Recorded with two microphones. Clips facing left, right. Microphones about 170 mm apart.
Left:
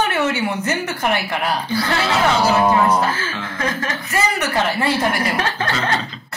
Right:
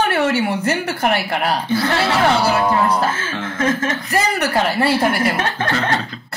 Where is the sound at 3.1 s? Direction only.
25° right (ahead or behind).